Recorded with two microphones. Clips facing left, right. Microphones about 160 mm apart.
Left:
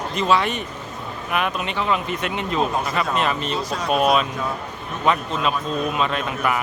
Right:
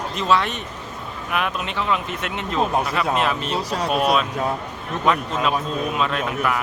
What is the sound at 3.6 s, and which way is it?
Speech, 35° right (ahead or behind).